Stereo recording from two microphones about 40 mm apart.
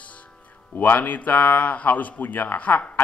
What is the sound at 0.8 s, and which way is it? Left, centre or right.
A man's voice, left.